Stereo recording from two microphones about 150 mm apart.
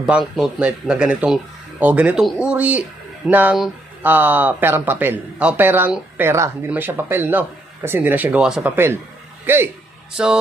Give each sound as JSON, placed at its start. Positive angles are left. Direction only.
{"t": 0.0, "sound": "speech", "side_deg": -5}